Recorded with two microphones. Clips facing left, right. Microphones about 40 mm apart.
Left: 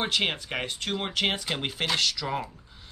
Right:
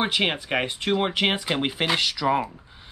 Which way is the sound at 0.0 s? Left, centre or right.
Centre.